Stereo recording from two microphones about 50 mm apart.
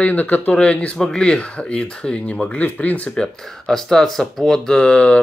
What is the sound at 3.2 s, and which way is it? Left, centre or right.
Speech, centre.